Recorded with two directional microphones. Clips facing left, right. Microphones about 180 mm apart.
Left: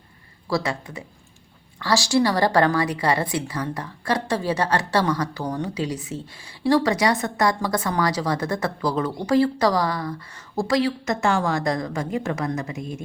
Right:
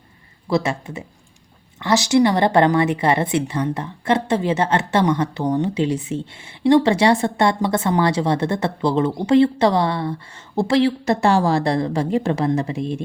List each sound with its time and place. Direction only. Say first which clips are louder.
0.4 s a woman's voice: right 4 dB; 25° right (ahead or behind)